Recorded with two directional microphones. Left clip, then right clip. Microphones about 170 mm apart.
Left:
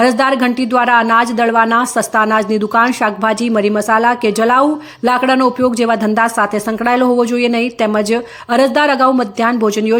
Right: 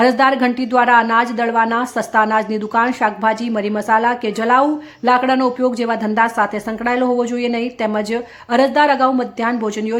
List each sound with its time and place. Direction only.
0.0 s speech: 15° left (ahead or behind)